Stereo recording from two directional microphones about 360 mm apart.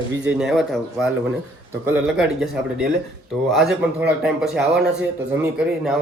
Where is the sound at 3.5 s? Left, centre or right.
Centre.